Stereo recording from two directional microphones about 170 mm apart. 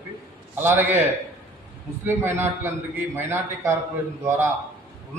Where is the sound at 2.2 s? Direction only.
15° right (ahead or behind).